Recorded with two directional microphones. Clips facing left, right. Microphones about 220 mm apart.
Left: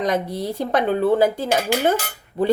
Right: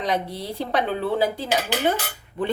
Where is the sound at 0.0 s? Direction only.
45° left (ahead or behind).